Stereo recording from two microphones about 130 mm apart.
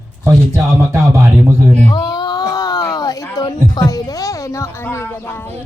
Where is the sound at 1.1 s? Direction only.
25° right (ahead or behind).